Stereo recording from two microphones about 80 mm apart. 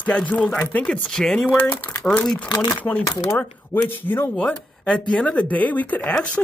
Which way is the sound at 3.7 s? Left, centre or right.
Left.